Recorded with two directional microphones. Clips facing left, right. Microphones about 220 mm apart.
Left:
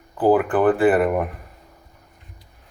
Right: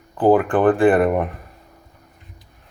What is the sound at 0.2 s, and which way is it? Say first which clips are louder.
Speech: right 2 dB; 5° left (ahead or behind).